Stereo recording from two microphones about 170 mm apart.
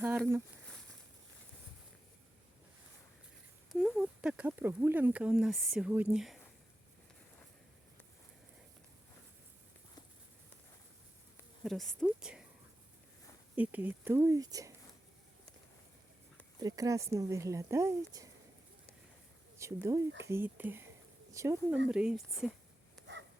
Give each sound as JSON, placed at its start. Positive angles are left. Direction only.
{"t": 3.7, "sound": "speech", "side_deg": 0}
{"t": 11.6, "sound": "a woman's voice", "side_deg": 0}
{"t": 13.6, "sound": "speech", "side_deg": -10}
{"t": 16.6, "sound": "speech", "side_deg": -20}
{"t": 19.5, "sound": "speech", "side_deg": -15}
{"t": 20.1, "sound": "speech", "side_deg": -90}
{"t": 20.3, "sound": "speech", "side_deg": -10}
{"t": 21.8, "sound": "a woman's voice", "side_deg": -5}